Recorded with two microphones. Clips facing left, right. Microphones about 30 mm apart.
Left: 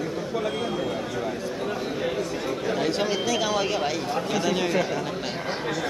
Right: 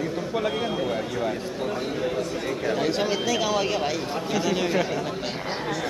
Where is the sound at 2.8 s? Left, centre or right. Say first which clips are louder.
Even; centre.